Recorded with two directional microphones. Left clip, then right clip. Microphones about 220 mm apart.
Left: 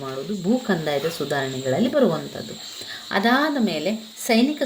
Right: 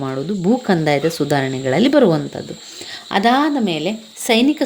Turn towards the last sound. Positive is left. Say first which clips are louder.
# right 5 dB
turn(degrees=-40)  # may be behind; listen again after turning